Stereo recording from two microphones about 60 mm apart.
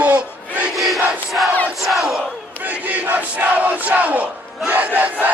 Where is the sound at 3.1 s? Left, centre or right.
Right.